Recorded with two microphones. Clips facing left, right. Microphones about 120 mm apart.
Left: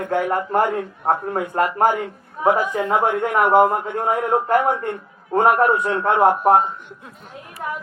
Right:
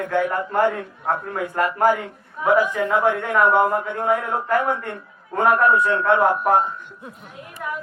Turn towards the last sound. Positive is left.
turn(degrees=30)  # may be behind; listen again after turning